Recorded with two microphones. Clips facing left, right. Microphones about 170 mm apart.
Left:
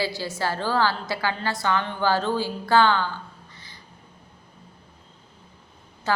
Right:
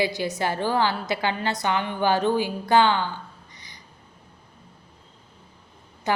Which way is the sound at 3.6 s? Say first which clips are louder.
Left 1 dB; 15° right (ahead or behind).